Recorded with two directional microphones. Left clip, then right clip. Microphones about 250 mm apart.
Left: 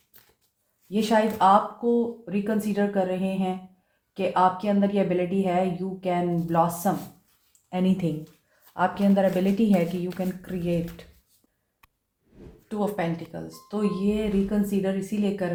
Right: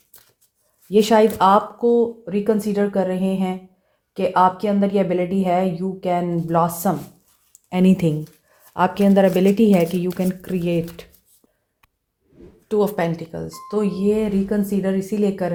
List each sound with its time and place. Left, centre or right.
0.9 s a woman's voice: right
12.3 s a sound: centre
12.6 s a woman's voice: right